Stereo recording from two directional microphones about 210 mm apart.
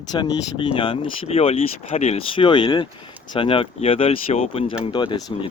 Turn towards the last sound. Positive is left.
turn(degrees=25)  # may be behind; listen again after turning